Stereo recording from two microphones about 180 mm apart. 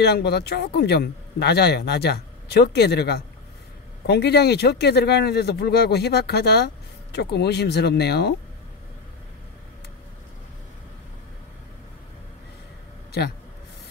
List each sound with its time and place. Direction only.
0.0 s speech: 65° left (ahead or behind)